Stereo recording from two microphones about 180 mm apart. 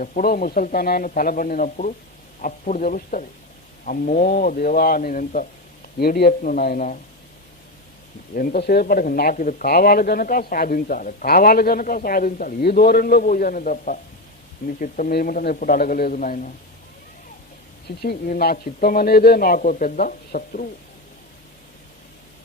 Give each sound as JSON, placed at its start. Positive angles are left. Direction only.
{"t": 0.0, "sound": "speech", "side_deg": 50}
{"t": 6.0, "sound": "speech", "side_deg": 60}
{"t": 8.4, "sound": "speech", "side_deg": 55}
{"t": 17.8, "sound": "speech", "side_deg": 60}